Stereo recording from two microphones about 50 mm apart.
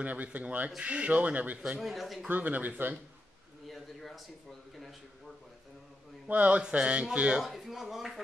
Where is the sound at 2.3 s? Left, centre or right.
Right.